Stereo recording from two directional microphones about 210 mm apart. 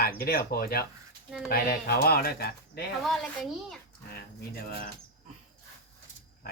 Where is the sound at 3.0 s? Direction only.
Centre (ahead or behind).